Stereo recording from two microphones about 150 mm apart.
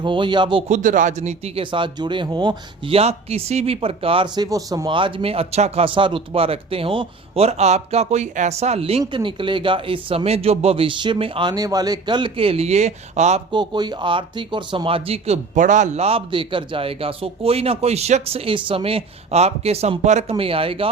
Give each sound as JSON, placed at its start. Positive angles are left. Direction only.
{"t": 0.0, "sound": "speech", "side_deg": -30}
{"t": 0.7, "sound": "speech", "side_deg": -60}
{"t": 4.4, "sound": "speech", "side_deg": -25}
{"t": 13.5, "sound": "speech", "side_deg": -30}
{"t": 15.5, "sound": "speech", "side_deg": -55}